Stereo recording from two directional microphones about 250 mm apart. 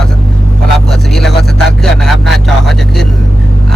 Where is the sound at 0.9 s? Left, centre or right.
Centre.